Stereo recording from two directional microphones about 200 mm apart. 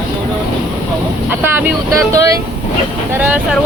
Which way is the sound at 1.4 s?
10° right (ahead or behind).